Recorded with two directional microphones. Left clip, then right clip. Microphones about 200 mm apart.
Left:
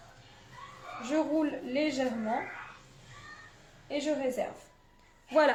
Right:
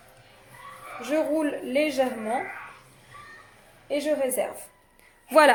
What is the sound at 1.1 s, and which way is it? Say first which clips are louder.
Speech: right 5 dB; 45° right (ahead or behind).